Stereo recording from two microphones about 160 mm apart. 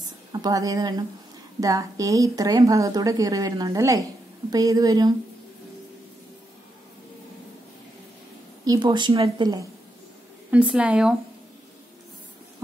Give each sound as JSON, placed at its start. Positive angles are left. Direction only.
{"t": 0.3, "sound": "a woman's voice", "side_deg": -25}
{"t": 8.6, "sound": "a woman's voice", "side_deg": -30}
{"t": 10.5, "sound": "speech", "side_deg": -10}